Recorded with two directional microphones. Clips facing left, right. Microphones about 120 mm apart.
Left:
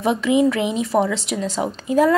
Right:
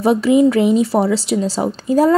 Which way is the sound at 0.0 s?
35° right (ahead or behind).